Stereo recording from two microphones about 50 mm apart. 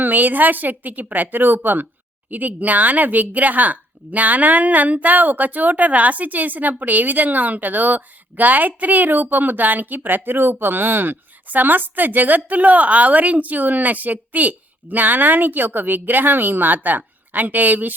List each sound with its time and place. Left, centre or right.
0.0 s speech: right